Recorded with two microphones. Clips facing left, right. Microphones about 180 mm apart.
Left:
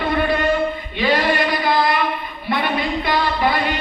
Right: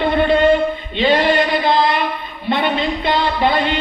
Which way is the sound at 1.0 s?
25° right (ahead or behind).